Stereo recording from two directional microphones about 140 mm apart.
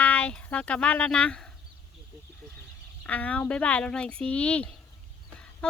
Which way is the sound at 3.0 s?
10° left (ahead or behind).